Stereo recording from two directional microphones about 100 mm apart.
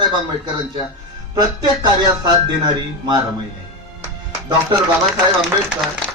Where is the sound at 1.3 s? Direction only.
45° right (ahead or behind).